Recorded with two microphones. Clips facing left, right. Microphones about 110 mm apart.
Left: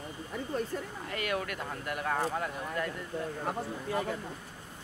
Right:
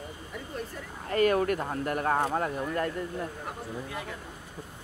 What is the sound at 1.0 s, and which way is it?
Speech, 40° right (ahead or behind).